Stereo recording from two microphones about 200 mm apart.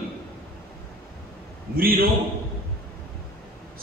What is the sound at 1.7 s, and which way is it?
Speech, 50° right (ahead or behind).